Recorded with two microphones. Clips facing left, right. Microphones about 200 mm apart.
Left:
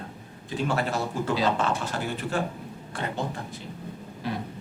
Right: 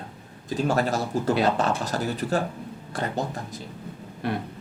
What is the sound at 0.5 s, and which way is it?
A man's voice, 40° right (ahead or behind).